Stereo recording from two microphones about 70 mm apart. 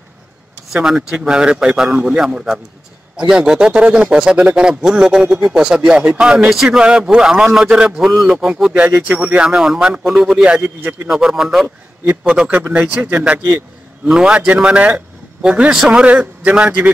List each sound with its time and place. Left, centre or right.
0.7 s speech: centre